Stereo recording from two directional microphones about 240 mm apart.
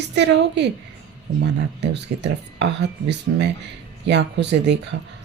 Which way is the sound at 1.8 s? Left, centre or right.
Right.